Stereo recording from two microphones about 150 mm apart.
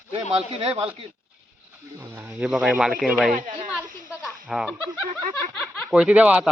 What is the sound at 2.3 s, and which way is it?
Speech, 5° right (ahead or behind).